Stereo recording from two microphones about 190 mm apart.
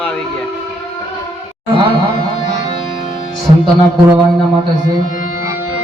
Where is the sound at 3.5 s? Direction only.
30° right (ahead or behind).